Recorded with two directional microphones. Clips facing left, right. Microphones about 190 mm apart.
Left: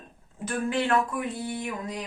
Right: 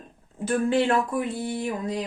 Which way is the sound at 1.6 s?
30° right (ahead or behind).